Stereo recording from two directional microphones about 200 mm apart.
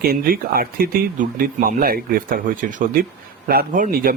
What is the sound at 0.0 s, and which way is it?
Speech, 50° right (ahead or behind).